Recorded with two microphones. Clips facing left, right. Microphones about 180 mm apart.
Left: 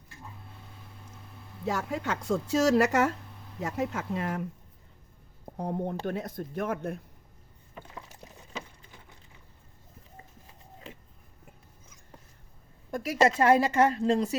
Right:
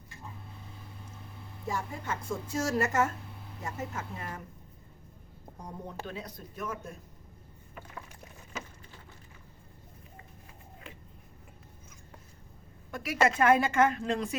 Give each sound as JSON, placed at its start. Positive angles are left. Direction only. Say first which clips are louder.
{"t": 1.6, "sound": "speech", "louder": "left 5 dB", "side_deg": 75}
{"t": 5.5, "sound": "speech", "louder": "left 10 dB", "side_deg": 60}
{"t": 7.8, "sound": "liquid", "louder": "left 1 dB", "side_deg": 20}
{"t": 12.9, "sound": "a woman's voice", "louder": "left 3 dB", "side_deg": 30}